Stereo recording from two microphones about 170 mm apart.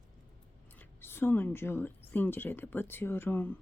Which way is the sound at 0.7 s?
10° left (ahead or behind).